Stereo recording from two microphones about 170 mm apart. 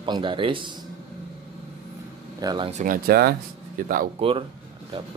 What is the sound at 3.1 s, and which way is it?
Speech, 65° right (ahead or behind).